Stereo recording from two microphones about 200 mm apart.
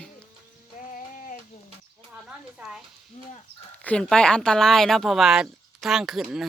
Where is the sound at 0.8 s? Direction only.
40° left (ahead or behind).